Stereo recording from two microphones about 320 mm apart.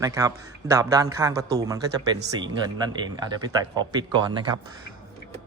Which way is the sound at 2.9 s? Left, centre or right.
Centre.